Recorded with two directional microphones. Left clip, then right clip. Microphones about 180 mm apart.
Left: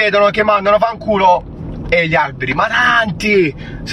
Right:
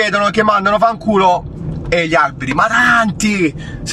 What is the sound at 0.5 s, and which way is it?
Speech, 35° right (ahead or behind).